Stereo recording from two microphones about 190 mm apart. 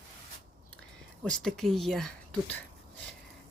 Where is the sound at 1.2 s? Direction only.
5° left (ahead or behind).